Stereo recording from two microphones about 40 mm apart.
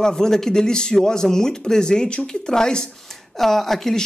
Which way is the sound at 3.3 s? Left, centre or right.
Centre.